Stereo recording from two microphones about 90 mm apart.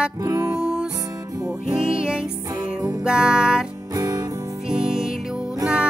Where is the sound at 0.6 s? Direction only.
10° right (ahead or behind).